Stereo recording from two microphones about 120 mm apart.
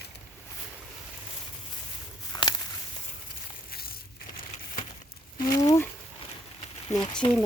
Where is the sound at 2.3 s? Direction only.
35° left (ahead or behind).